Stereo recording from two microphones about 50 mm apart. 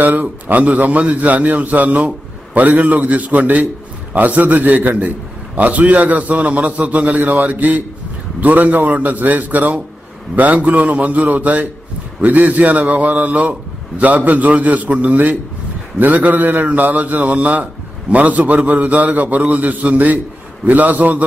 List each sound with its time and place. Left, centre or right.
0.0 s a man's voice: right
7.2 s a man's voice: right